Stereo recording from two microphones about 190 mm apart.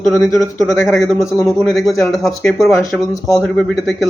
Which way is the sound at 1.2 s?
15° left (ahead or behind).